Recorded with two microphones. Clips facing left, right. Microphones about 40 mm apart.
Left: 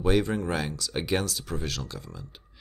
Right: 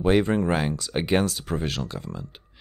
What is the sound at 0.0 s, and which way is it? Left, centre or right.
Speech, right.